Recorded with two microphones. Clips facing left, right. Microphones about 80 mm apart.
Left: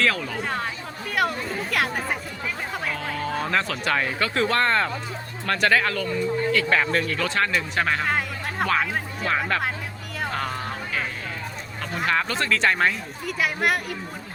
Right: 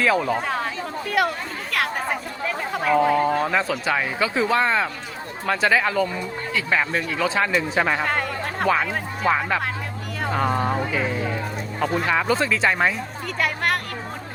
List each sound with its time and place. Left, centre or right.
0.0 s speech: centre
0.4 s chatter: centre
1.7 s speech: centre
2.9 s speech: centre
8.0 s speech: centre; by 10.8 s right
10.9 s speech: centre
13.2 s speech: centre